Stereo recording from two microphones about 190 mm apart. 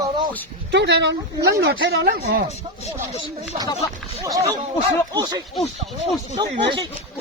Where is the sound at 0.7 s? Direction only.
65° right (ahead or behind).